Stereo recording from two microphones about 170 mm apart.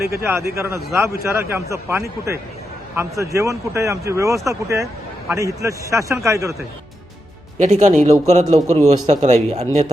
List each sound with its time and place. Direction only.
0.2 s speech: 15° right (ahead or behind)
7.6 s a man's voice: 45° right (ahead or behind)